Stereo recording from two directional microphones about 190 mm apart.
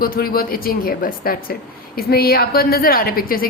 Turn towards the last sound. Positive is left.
turn(degrees=50)  # may be behind; listen again after turning